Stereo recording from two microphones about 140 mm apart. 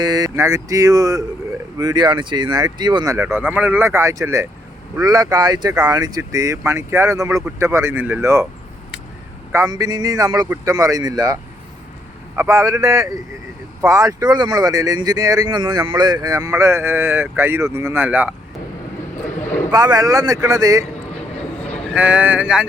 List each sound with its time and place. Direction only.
0.0 s speech: 30° right (ahead or behind)
3.2 s speech: 15° right (ahead or behind)
9.5 s speech: 25° right (ahead or behind)
12.4 s speech: 20° right (ahead or behind)
19.7 s speech: 25° right (ahead or behind)
21.9 s speech: 10° right (ahead or behind)